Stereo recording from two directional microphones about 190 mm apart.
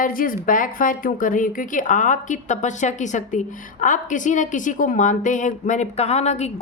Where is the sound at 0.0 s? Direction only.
50° left (ahead or behind).